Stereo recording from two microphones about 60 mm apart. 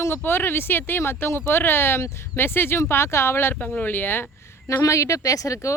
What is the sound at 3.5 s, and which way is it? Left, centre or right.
Speech, centre.